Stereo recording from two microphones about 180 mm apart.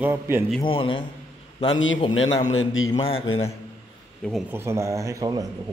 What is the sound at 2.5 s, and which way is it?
Speech, 90° left.